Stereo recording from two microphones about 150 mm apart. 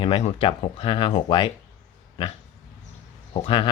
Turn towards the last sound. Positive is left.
turn(degrees=35)  # may be behind; listen again after turning